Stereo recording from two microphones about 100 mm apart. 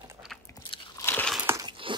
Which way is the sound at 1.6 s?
55° right (ahead or behind).